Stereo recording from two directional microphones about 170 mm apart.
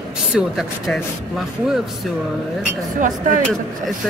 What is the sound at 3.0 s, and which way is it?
Speech, 50° right (ahead or behind).